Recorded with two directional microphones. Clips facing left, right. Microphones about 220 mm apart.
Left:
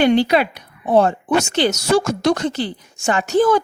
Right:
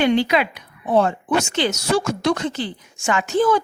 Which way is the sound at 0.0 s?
35° left (ahead or behind).